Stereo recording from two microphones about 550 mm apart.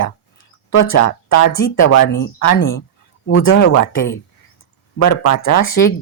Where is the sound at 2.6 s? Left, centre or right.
Centre.